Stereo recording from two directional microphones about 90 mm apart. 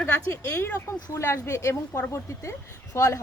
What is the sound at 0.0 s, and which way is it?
A woman's voice, 25° left (ahead or behind).